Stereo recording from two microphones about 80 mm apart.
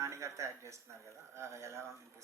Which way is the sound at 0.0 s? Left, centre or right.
Right.